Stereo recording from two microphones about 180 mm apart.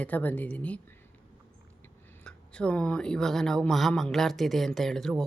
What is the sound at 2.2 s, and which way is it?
Speech, 5° left (ahead or behind).